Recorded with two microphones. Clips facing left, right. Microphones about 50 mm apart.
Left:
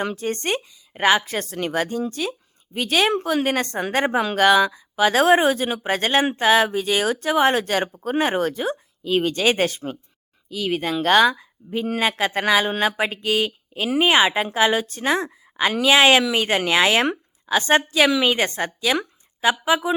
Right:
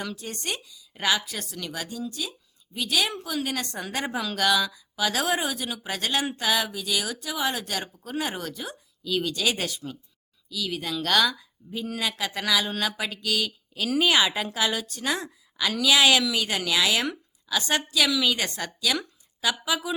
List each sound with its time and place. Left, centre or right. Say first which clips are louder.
0.0 s speech: left 9 dB; left